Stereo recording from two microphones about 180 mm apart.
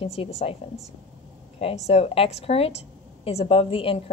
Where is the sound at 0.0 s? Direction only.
35° left (ahead or behind).